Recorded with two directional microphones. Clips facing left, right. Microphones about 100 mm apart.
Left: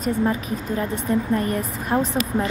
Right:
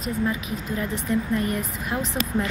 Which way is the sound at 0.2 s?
40° left (ahead or behind).